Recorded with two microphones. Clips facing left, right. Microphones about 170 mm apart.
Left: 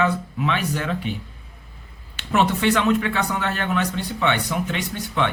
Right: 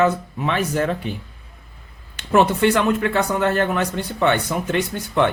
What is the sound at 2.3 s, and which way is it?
Speech, 50° right (ahead or behind).